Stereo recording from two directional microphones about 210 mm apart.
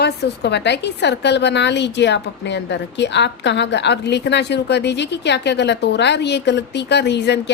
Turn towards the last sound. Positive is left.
turn(degrees=55)  # may be behind; listen again after turning